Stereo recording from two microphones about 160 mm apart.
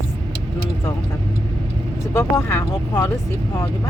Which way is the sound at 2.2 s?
15° left (ahead or behind).